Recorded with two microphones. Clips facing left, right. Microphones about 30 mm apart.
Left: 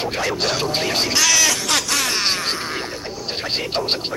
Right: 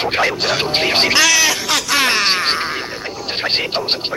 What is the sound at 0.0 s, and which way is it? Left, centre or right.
Music, right.